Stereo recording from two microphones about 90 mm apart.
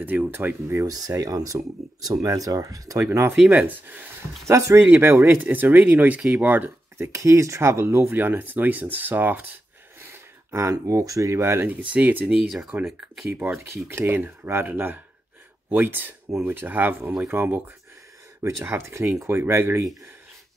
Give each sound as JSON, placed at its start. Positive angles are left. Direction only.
{"t": 0.0, "sound": "speech", "side_deg": -20}
{"t": 0.8, "sound": "speech", "side_deg": -45}
{"t": 3.1, "sound": "speech", "side_deg": -25}
{"t": 4.5, "sound": "speech", "side_deg": -35}
{"t": 7.1, "sound": "speech", "side_deg": -35}
{"t": 11.9, "sound": "speech", "side_deg": -20}
{"t": 12.3, "sound": "speech", "side_deg": -5}
{"t": 13.4, "sound": "speech", "side_deg": -25}
{"t": 18.6, "sound": "speech", "side_deg": -25}